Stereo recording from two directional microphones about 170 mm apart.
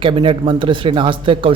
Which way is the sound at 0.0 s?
30° right (ahead or behind).